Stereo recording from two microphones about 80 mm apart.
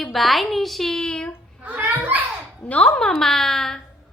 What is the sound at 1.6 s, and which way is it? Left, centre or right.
Children playing, right.